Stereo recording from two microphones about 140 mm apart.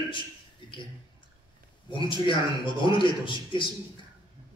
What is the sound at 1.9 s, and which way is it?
A man's voice, 35° left (ahead or behind).